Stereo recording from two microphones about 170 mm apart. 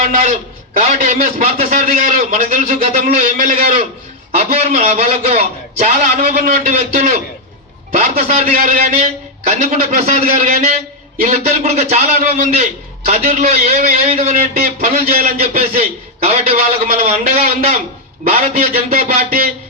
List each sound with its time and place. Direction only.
0.0 s a man's voice: 40° right (ahead or behind)